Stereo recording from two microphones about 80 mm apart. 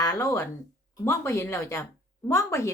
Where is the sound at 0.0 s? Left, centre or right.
Left.